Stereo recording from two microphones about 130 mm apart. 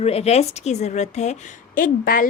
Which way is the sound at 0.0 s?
50° left (ahead or behind).